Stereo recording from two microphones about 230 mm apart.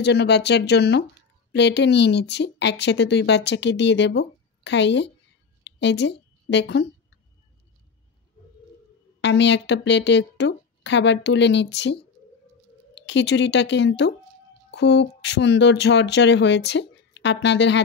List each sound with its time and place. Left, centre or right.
0.0 s speech: left
5.8 s a sound: left
9.2 s speech: left